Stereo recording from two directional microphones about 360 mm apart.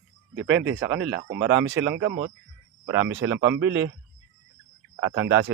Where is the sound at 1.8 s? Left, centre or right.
Centre.